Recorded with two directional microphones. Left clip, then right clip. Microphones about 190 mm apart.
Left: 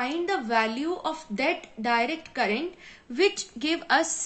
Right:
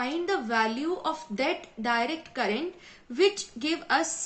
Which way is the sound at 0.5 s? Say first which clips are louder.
Left 2 dB; 15° left (ahead or behind).